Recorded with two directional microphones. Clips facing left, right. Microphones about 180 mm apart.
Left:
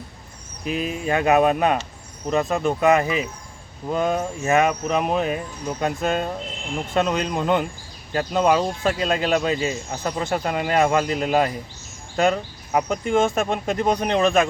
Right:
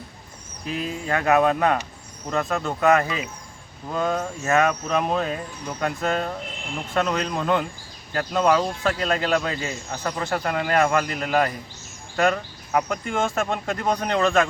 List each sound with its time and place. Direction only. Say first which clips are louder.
0.6 s speech: left 4 dB; 15° left (ahead or behind)